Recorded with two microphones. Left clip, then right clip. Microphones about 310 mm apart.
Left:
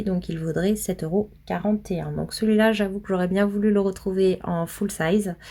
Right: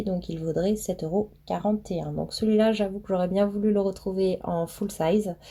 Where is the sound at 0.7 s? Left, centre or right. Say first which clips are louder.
Left 2 dB; left.